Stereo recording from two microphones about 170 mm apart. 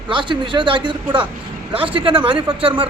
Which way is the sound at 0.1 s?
30° right (ahead or behind).